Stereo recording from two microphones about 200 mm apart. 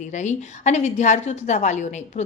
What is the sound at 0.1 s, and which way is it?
A woman's voice, 35° left (ahead or behind).